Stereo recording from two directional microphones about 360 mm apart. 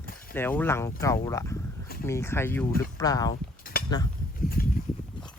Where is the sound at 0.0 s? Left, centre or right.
Left.